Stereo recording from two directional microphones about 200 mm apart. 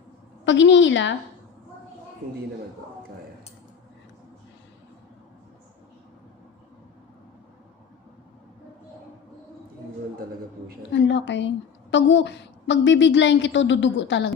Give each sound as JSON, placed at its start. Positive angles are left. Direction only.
{"t": 0.4, "sound": "a woman's voice", "side_deg": 65}
{"t": 10.9, "sound": "a woman's voice", "side_deg": 65}